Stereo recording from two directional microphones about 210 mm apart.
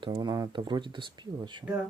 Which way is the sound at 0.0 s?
20° right (ahead or behind).